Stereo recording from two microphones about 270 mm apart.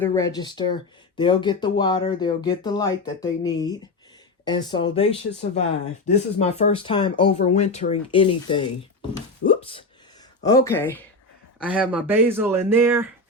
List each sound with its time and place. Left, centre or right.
0.0 s speech: centre
6.1 s speech: left
9.5 s a sound: centre
10.4 s speech: centre
11.6 s speech: centre